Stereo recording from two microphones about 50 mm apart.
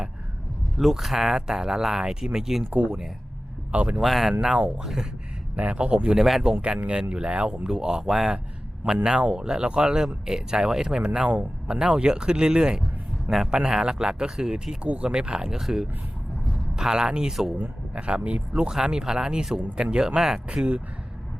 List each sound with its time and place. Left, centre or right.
0.8 s speech: centre
2.6 s speech: right
4.0 s speech: centre
4.3 s speech: centre
6.1 s speech: centre
6.4 s speech: centre